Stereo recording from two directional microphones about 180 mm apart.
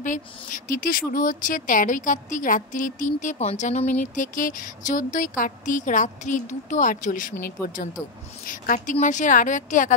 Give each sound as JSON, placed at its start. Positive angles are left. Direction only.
{"t": 0.0, "sound": "a woman's voice", "side_deg": 45}